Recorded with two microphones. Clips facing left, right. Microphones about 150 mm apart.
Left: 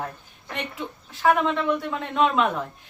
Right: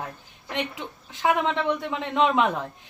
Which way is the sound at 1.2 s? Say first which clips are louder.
Left 2 dB; 20° right (ahead or behind).